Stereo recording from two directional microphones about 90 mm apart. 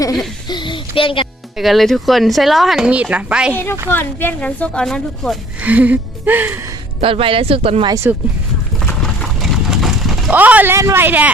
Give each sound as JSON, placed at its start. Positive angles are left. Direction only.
{"t": 0.4, "sound": "a child's voice", "side_deg": 60}
{"t": 1.5, "sound": "speech", "side_deg": 0}
{"t": 2.9, "sound": "music", "side_deg": -15}
{"t": 3.8, "sound": "speech", "side_deg": 20}
{"t": 5.6, "sound": "music", "side_deg": -15}
{"t": 7.0, "sound": "speech", "side_deg": -90}
{"t": 8.1, "sound": "speech", "side_deg": -20}
{"t": 9.0, "sound": "horse", "side_deg": 0}
{"t": 10.3, "sound": "speech", "side_deg": -20}
{"t": 10.8, "sound": "a man's voice", "side_deg": -35}
{"t": 11.0, "sound": "speech", "side_deg": -20}